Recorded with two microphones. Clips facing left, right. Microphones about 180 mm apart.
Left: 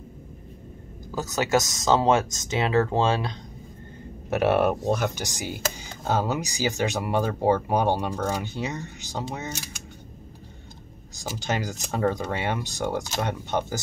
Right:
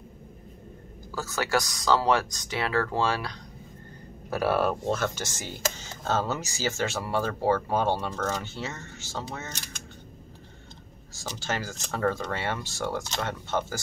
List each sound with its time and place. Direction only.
1.1 s speech: 20° left (ahead or behind)
11.3 s speech: 20° left (ahead or behind)